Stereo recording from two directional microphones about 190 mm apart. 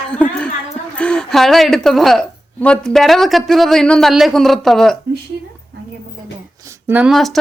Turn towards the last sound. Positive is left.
turn(degrees=0)  # may be behind; listen again after turning